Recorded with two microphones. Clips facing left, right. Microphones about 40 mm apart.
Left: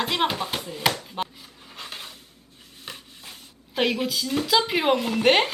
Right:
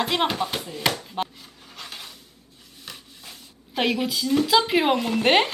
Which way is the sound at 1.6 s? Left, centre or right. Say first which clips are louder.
Left 1 dB; left.